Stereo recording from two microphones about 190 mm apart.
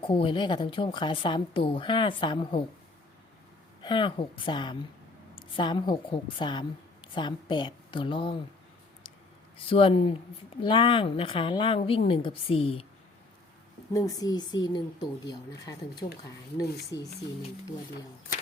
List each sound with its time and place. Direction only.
0.0 s a woman's voice: 30° left (ahead or behind)
3.8 s a woman's voice: 25° left (ahead or behind)
9.6 s a woman's voice: 30° left (ahead or behind)
13.9 s a woman's voice: 20° left (ahead or behind)
16.9 s speech: 70° left (ahead or behind)